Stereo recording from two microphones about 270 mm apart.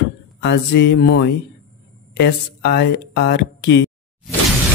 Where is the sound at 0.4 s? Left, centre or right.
Left.